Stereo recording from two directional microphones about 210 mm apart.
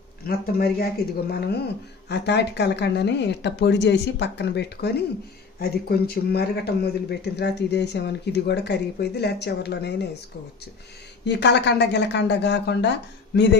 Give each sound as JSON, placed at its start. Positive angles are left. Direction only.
{"t": 0.3, "sound": "speech", "side_deg": 45}
{"t": 11.2, "sound": "a woman's voice", "side_deg": 55}